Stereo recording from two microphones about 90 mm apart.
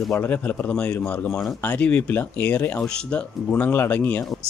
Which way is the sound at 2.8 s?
10° left (ahead or behind).